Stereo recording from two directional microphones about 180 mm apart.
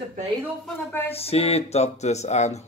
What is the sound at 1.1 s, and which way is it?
Speech, 35° left (ahead or behind).